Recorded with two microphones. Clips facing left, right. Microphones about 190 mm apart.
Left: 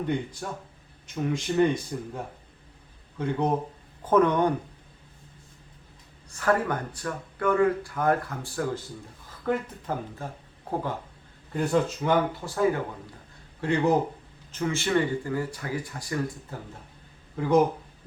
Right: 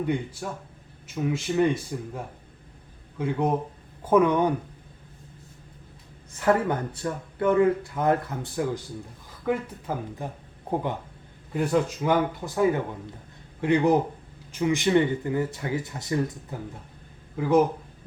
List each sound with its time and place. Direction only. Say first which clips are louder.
0.0 s speech: right 1 dB; 5° right (ahead or behind)
6.3 s speech: right 2 dB; 25° right (ahead or behind)
9.4 s speech: right 1 dB; 10° right (ahead or behind)
13.6 s speech: right 2 dB; 15° right (ahead or behind)
17.3 s speech: right 1 dB; 5° right (ahead or behind)